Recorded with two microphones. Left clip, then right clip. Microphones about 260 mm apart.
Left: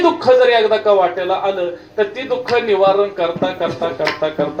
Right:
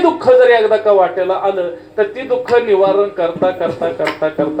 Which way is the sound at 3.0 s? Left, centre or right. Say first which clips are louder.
Right 2 dB; right.